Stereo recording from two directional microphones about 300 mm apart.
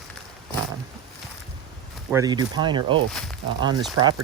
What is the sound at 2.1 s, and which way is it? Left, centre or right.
Speech, centre.